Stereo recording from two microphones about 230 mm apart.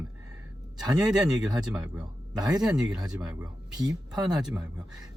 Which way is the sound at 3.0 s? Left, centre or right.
Centre.